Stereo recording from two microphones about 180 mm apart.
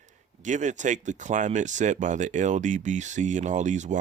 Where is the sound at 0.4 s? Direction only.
45° right (ahead or behind).